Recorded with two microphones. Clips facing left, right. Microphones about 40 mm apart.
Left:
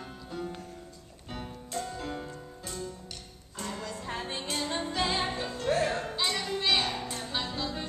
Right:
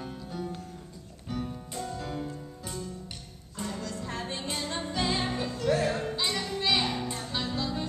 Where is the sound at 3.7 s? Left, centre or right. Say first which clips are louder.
Even; centre.